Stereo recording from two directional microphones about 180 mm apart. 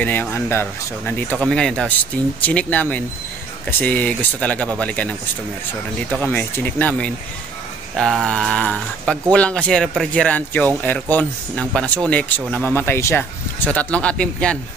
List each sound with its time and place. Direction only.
0.0 s speech: 10° left (ahead or behind)
6.3 s speech: 10° left (ahead or behind)